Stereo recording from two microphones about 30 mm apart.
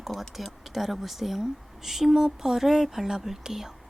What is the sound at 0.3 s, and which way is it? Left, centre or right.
Speech, centre.